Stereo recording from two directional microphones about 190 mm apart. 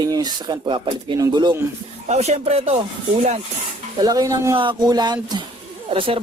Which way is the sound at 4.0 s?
20° right (ahead or behind).